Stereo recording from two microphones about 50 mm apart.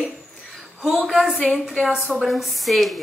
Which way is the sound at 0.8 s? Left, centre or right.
Centre.